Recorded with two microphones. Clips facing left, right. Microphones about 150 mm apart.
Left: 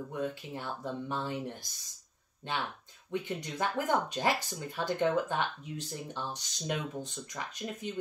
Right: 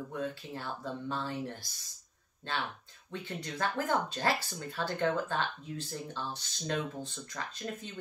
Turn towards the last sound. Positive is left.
turn(degrees=15)  # may be behind; listen again after turning